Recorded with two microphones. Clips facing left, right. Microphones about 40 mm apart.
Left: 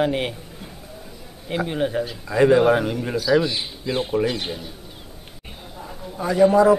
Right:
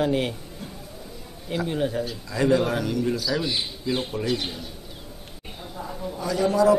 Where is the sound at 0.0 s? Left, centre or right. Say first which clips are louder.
Left 1 dB; left.